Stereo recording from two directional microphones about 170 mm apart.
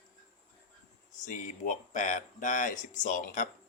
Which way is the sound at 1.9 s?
50° left (ahead or behind).